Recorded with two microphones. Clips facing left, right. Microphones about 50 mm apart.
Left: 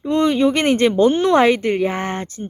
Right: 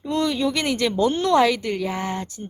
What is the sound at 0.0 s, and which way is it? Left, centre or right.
Speech, left.